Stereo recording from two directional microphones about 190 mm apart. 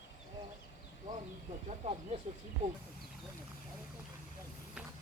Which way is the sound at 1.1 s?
20° right (ahead or behind).